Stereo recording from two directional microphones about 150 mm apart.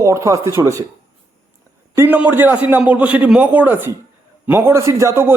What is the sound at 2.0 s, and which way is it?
A man's voice, 10° right (ahead or behind).